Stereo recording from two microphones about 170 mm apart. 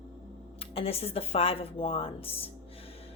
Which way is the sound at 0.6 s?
35° left (ahead or behind).